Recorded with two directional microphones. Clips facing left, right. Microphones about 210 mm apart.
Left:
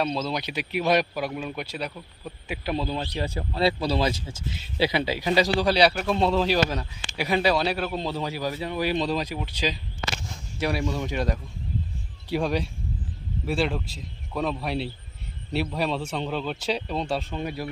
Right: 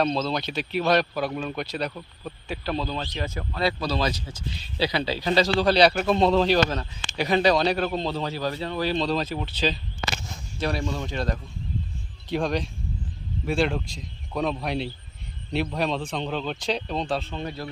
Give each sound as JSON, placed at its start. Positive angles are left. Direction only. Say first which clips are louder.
{"t": 0.0, "sound": "speech", "louder": "right 2 dB", "side_deg": 10}
{"t": 3.2, "sound": "a man's voice", "louder": "left 3 dB", "side_deg": 30}